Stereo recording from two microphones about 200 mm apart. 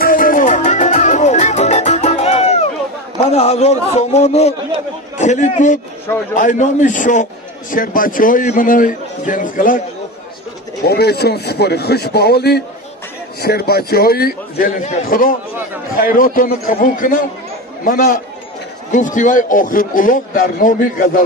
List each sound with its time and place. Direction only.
0.0 s music: 45° left (ahead or behind)
3.3 s a man's voice: 35° left (ahead or behind)
10.9 s a man's voice: 55° left (ahead or behind)